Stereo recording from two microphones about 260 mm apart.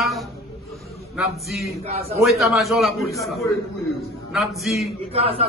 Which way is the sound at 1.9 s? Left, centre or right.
Right.